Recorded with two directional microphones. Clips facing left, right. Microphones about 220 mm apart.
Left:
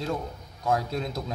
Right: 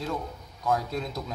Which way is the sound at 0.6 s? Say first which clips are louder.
Left 1 dB; 30° left (ahead or behind).